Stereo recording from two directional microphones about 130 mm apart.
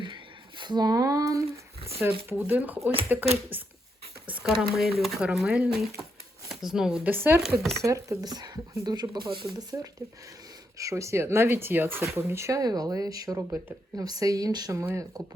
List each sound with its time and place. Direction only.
0.6 s speech: 35° right (ahead or behind)
2.0 s speech: 15° right (ahead or behind)
7.1 s speech: 15° right (ahead or behind)
7.4 s speech: centre (ahead or behind)
7.8 s speech: 25° right (ahead or behind)